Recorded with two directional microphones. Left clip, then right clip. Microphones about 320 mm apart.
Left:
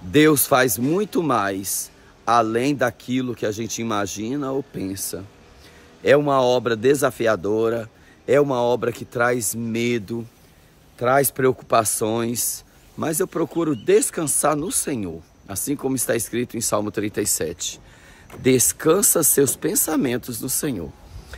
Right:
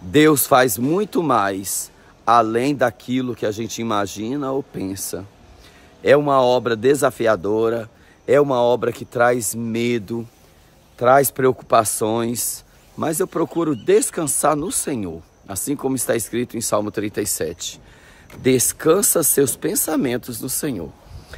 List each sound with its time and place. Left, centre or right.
0.1 s speech: centre